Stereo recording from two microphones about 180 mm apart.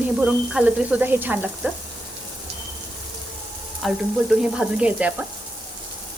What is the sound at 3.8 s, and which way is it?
Frying, 5° right (ahead or behind).